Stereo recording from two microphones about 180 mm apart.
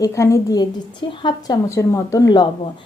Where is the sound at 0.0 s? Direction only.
15° left (ahead or behind).